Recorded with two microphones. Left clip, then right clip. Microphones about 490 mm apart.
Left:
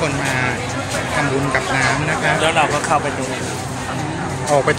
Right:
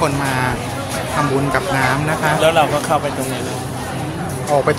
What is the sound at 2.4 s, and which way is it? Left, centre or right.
Vehicle, right.